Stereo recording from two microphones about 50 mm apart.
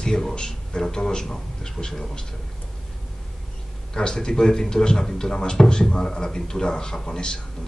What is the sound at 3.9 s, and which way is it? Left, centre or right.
Speech, centre.